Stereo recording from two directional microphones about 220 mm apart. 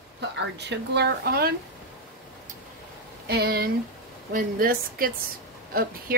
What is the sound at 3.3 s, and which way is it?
A woman's voice, 45° right (ahead or behind).